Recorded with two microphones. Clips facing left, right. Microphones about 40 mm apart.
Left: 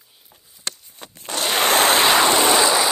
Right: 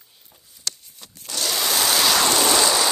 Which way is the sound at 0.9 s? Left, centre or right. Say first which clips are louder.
Left 6 dB; left.